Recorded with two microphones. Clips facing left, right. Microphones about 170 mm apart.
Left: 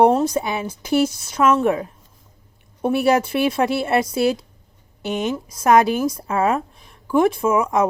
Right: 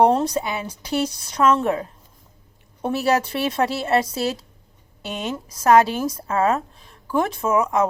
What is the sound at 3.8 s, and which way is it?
Speech, 15° left (ahead or behind).